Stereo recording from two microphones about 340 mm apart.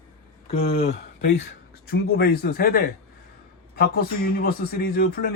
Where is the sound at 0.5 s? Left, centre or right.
Centre.